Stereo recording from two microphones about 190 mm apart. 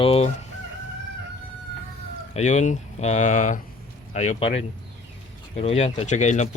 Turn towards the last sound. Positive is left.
turn(degrees=40)  # may be behind; listen again after turning